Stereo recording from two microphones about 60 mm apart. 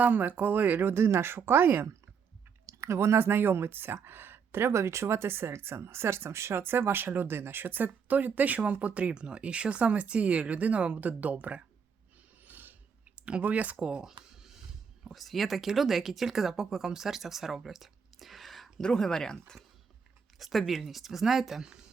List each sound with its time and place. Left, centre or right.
0.0 s speech: right
2.6 s speech: right
12.5 s a sound: right
13.1 s a sound: centre
13.4 s speech: right
13.8 s a sound: centre
15.1 s speech: centre
18.8 s speech: centre
20.4 s speech: centre